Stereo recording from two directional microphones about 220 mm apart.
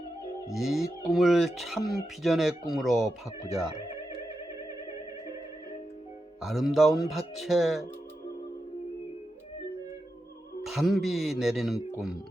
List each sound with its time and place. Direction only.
0.5 s speech: centre (ahead or behind)
6.4 s speech: centre (ahead or behind)
10.6 s speech: centre (ahead or behind)